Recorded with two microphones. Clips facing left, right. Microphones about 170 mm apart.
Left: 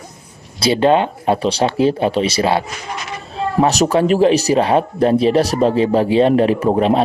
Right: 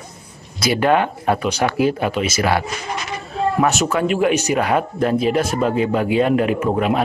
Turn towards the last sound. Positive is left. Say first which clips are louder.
# left 4 dB
turn(degrees=30)  # may be behind; listen again after turning